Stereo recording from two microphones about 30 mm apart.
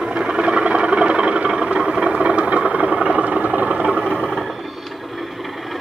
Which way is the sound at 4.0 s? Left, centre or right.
Centre.